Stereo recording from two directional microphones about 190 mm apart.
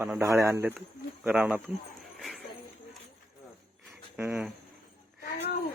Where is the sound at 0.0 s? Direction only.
15° right (ahead or behind).